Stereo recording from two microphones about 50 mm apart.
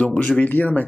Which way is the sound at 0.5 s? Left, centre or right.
Left.